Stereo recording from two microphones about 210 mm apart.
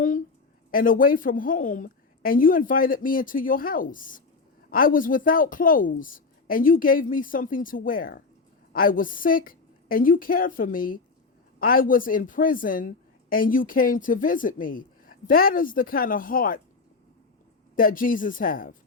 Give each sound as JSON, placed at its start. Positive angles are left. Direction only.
{"t": 0.7, "sound": "speech", "side_deg": 40}
{"t": 17.7, "sound": "speech", "side_deg": 40}